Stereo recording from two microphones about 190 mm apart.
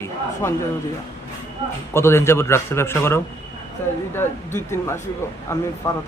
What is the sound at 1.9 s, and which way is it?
A man's voice, 15° left (ahead or behind).